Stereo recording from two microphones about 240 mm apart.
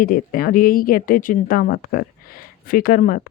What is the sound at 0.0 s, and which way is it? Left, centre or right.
Speech, left.